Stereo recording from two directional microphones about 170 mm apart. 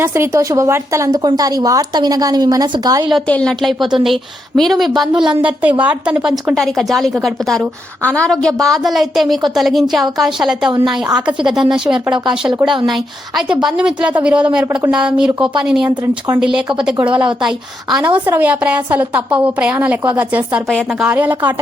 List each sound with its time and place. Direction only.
0.0 s speech: 15° right (ahead or behind)
3.2 s a woman's voice: 5° left (ahead or behind); by 20.6 s 10° right (ahead or behind)
20.7 s a woman's voice: centre (ahead or behind)
21.1 s a woman's voice: 10° right (ahead or behind)